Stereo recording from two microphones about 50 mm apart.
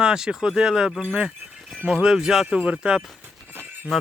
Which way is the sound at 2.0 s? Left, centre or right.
Centre.